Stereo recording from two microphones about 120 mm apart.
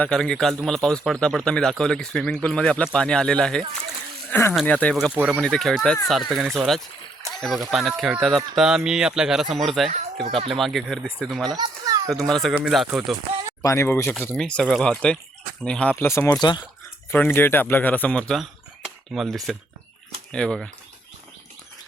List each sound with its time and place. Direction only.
0.0 s speech: 5° left (ahead or behind)
4.3 s speech: 20° left (ahead or behind)
5.1 s speech: 10° right (ahead or behind)
5.4 s speech: 5° left (ahead or behind)
11.4 s a sound: 35° right (ahead or behind)
12.3 s speech: 5° left (ahead or behind)
13.6 s speech: 25° left (ahead or behind)
14.3 s speech: 5° left (ahead or behind)
16.0 s speech: 20° left (ahead or behind); by 16.6 s 35° left (ahead or behind)
17.1 s speech: 15° left (ahead or behind)